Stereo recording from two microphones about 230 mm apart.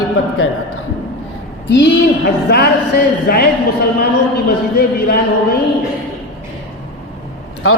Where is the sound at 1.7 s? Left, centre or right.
Left.